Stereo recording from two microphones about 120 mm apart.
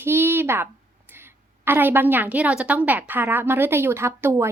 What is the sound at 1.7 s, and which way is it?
A woman's voice, 15° right (ahead or behind).